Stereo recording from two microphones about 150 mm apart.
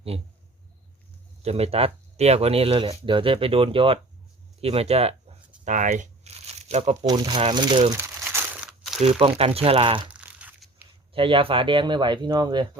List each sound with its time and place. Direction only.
0.1 s speech: 40° right (ahead or behind)
1.4 s speech: 45° right (ahead or behind)
5.6 s speech: 55° right (ahead or behind)
7.0 s speech: 25° right (ahead or behind)
7.9 s crumpling: 15° right (ahead or behind)
9.0 s speech: 40° right (ahead or behind)
10.1 s crunch: 10° right (ahead or behind)
11.1 s speech: 35° right (ahead or behind)